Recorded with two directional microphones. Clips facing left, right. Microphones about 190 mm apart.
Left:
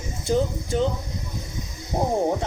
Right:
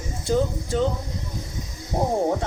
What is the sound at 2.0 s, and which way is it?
Speech, 10° right (ahead or behind).